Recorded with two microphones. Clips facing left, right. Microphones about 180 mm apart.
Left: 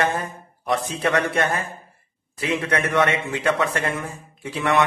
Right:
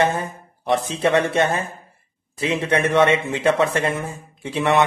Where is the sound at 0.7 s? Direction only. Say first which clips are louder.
Right 3 dB; 25° right (ahead or behind).